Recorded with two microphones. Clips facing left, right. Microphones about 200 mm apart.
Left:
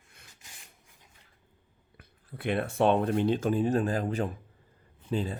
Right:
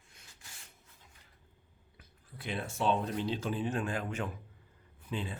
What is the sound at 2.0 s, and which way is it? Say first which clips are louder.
Speech: left 10 dB; 60° left (ahead or behind).